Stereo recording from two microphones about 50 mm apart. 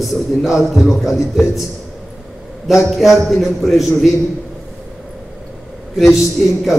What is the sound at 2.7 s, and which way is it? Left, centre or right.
A man's voice, centre.